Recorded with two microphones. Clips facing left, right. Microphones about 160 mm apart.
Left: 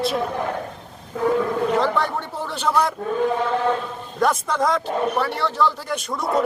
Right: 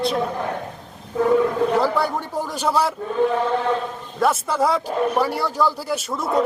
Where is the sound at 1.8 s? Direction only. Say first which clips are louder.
Right 1 dB; 10° right (ahead or behind).